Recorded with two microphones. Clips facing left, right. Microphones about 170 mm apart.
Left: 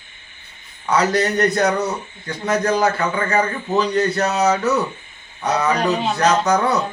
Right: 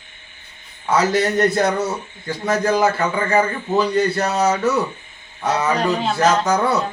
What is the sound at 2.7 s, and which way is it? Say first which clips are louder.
Speech: right 2 dB; 5° right (ahead or behind).